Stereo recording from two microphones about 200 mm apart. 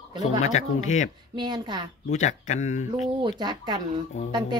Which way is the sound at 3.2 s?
20° right (ahead or behind).